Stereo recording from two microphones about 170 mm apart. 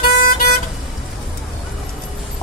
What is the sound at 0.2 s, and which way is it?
Vehicle, 60° left (ahead or behind).